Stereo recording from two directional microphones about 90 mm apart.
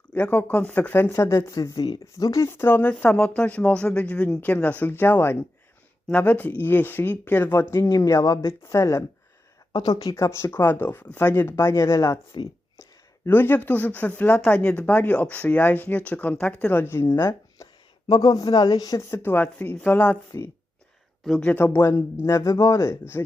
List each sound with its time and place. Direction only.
0.1 s speech: 20° left (ahead or behind)
1.1 s speech: 35° left (ahead or behind)
2.5 s speech: 25° left (ahead or behind)
7.9 s speech: 40° left (ahead or behind)
9.7 s speech: 50° left (ahead or behind)
13.2 s speech: 25° left (ahead or behind)
16.8 s speech: 30° left (ahead or behind); by 19.0 s 45° left (ahead or behind)
19.1 s speech: 20° left (ahead or behind)
21.4 s speech: 20° left (ahead or behind)
22.4 s speech: 40° left (ahead or behind)